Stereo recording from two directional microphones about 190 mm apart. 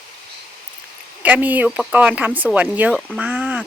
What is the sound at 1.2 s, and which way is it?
Speech, 10° right (ahead or behind).